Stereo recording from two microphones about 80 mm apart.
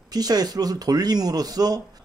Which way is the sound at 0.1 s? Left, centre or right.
Right.